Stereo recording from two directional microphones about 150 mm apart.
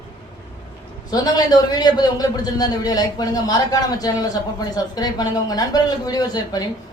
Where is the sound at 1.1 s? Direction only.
25° left (ahead or behind).